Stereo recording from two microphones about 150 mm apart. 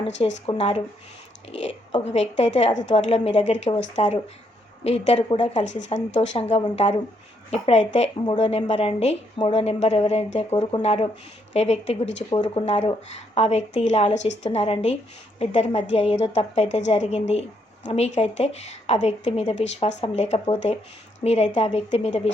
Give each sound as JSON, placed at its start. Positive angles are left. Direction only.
{"t": 0.0, "sound": "a woman's voice", "side_deg": 40}
{"t": 12.6, "sound": "a woman's voice", "side_deg": 45}